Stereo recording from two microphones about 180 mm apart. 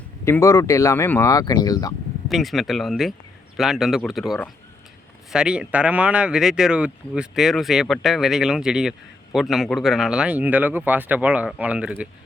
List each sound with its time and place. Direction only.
0.3 s speech: 15° left (ahead or behind)
2.2 s speech: centre (ahead or behind)